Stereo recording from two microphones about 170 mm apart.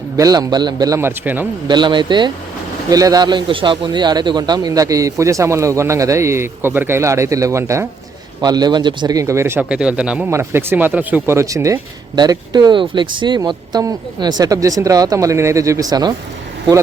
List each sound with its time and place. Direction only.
0.2 s speech: 20° right (ahead or behind)
1.6 s speech: 25° right (ahead or behind)